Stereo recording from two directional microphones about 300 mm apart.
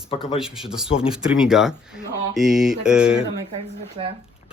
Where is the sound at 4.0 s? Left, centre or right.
Centre.